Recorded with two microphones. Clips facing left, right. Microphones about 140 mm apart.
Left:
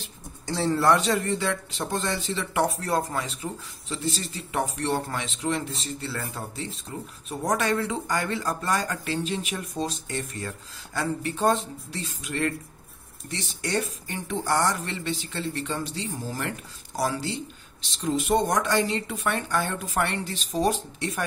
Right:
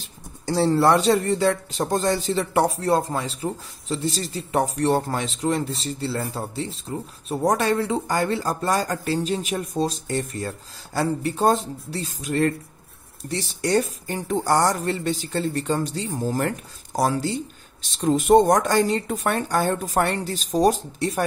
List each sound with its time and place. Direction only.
0.6 s speech: 30° right (ahead or behind)